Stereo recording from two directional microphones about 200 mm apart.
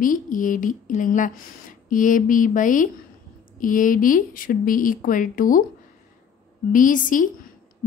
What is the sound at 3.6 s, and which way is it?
Speech, 40° left (ahead or behind).